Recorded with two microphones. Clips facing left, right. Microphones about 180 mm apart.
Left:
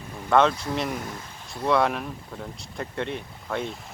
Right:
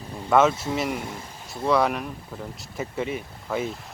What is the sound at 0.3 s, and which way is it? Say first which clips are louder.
Speech: right 1 dB; 5° right (ahead or behind).